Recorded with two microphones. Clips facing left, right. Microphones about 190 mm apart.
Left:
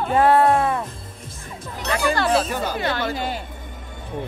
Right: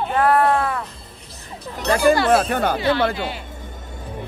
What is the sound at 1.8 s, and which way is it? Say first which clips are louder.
Speech: right 6 dB; 40° right (ahead or behind).